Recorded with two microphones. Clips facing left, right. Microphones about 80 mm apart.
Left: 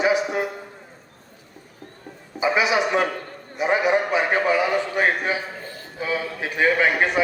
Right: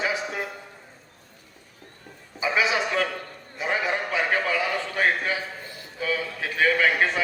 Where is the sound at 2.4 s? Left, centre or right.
Left.